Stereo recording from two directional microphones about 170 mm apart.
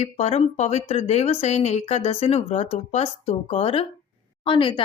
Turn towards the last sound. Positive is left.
turn(degrees=30)  # may be behind; listen again after turning